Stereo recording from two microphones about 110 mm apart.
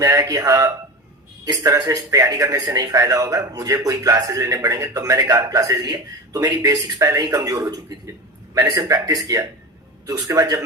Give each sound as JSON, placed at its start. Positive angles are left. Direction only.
{"t": 0.0, "sound": "speech", "side_deg": -40}